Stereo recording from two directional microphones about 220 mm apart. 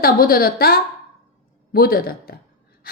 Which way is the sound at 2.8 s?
45° left (ahead or behind).